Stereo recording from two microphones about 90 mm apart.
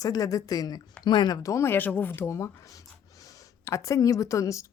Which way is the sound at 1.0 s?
55° left (ahead or behind).